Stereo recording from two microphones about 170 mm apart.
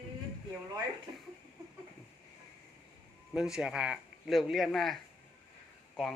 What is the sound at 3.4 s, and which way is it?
Speech, 5° right (ahead or behind).